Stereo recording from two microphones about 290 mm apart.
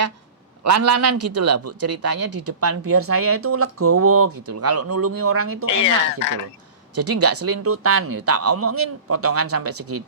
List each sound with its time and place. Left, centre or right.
0.6 s a man's voice: right
5.6 s speech: centre
6.9 s a man's voice: right